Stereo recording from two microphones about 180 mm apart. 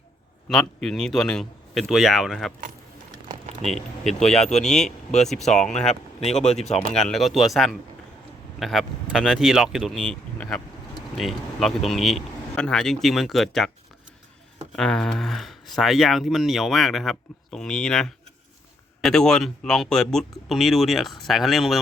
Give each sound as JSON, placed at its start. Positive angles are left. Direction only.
{"t": 0.8, "sound": "speech", "side_deg": 5}
{"t": 3.6, "sound": "speech", "side_deg": 0}
{"t": 5.8, "sound": "speech", "side_deg": 35}
{"t": 6.9, "sound": "speech", "side_deg": 0}
{"t": 14.8, "sound": "speech", "side_deg": 5}